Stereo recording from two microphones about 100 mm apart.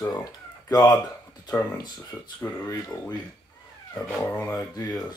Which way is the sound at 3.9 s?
20° left (ahead or behind).